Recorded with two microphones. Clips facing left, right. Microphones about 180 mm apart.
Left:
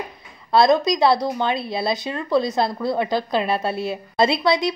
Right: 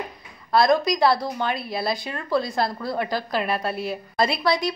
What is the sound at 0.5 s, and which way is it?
A woman's voice, 25° left (ahead or behind).